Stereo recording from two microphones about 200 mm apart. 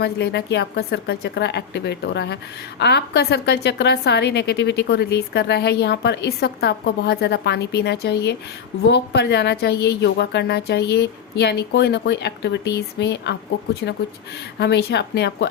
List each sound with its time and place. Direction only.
0.0 s a woman's voice: 55° left (ahead or behind)